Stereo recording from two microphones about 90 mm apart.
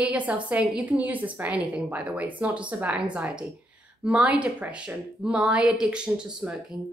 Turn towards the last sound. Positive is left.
turn(degrees=-10)  # may be behind; listen again after turning